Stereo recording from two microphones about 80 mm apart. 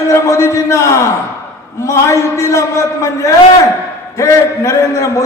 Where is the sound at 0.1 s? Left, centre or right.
Left.